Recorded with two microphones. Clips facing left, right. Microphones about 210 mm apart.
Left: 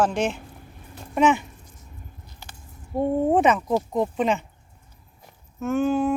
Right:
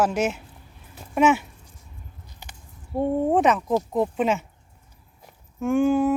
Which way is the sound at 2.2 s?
15° right (ahead or behind).